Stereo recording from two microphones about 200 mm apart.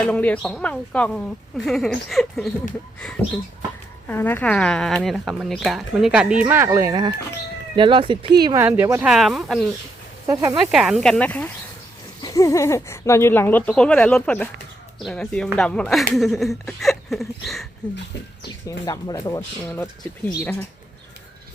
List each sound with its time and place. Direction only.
0.0 s speech: 5° left (ahead or behind); by 8.6 s 20° right (ahead or behind)
8.6 s speech: 10° right (ahead or behind)
10.2 s speech: 20° right (ahead or behind)
10.7 s speech: centre (ahead or behind)
18.9 s speech: 20° left (ahead or behind)